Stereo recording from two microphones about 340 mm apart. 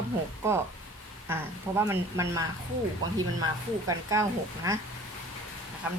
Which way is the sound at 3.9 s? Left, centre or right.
Centre.